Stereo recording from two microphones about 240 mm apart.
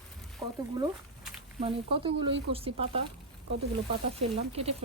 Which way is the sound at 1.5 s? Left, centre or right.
Right.